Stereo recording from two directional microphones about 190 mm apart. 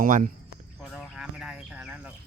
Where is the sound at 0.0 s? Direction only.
45° right (ahead or behind).